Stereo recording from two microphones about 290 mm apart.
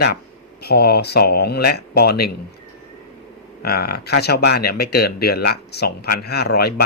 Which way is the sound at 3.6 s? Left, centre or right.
Left.